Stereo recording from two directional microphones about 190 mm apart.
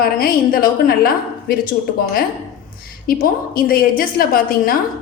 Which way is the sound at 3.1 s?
50° left (ahead or behind).